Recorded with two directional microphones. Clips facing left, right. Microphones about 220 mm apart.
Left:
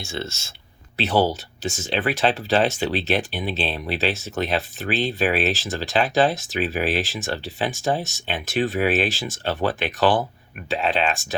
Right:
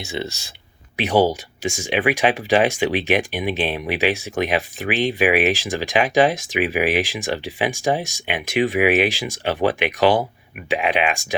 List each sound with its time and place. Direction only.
0.0 s speech: 15° right (ahead or behind)